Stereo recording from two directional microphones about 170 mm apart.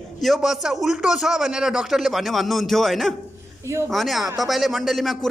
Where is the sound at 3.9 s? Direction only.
Centre (ahead or behind).